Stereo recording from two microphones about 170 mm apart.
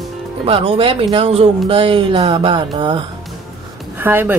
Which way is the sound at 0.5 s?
35° right (ahead or behind).